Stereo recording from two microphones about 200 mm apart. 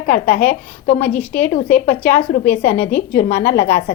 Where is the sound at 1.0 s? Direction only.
10° left (ahead or behind).